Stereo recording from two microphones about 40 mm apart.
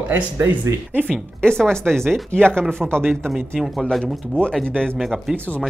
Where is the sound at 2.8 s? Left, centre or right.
Centre.